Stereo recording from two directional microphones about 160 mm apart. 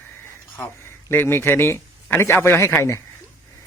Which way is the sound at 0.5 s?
15° left (ahead or behind).